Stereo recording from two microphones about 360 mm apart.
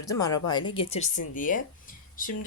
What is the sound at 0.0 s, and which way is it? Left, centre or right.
Speech, centre.